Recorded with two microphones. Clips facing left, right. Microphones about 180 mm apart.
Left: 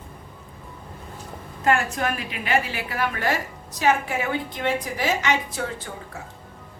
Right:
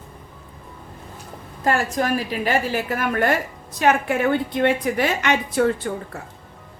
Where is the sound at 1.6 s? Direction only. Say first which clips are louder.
Right 2 dB; 35° right (ahead or behind); by 5.9 s 60° right (ahead or behind).